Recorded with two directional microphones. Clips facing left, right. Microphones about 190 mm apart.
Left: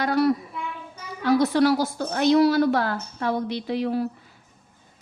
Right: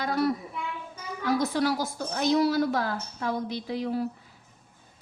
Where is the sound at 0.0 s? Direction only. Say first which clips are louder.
Left 5 dB; 70° left (ahead or behind).